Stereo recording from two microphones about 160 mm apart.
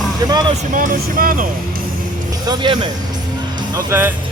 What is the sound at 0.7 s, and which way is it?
Speech, 55° right (ahead or behind).